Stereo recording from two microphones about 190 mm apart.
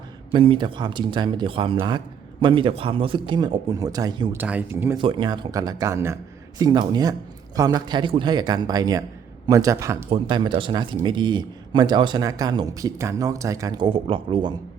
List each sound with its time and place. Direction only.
0.3 s a man's voice: 25° right (ahead or behind)
4.4 s speech: 10° right (ahead or behind)
4.9 s a man's voice: 25° right (ahead or behind)